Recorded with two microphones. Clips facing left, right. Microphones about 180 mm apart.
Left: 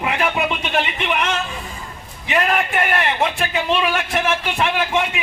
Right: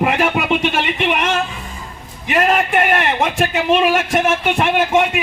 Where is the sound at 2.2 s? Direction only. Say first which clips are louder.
Right 4 dB; 45° right (ahead or behind).